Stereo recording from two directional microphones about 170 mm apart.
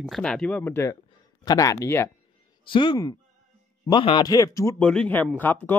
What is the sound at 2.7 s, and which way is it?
Speech, 30° left (ahead or behind).